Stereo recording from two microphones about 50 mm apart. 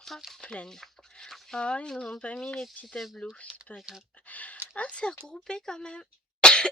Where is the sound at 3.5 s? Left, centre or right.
Centre.